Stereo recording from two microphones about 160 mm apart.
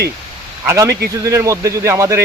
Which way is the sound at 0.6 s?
15° right (ahead or behind).